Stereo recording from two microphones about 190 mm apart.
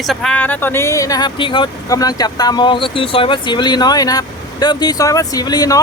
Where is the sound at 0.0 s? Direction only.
Centre (ahead or behind).